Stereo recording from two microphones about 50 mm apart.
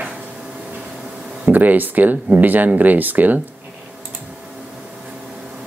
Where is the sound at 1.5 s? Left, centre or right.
Right.